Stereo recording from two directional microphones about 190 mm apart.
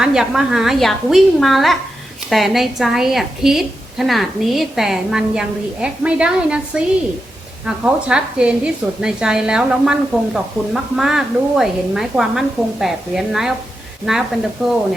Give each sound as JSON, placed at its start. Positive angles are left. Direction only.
{"t": 0.0, "sound": "a woman's voice", "side_deg": -5}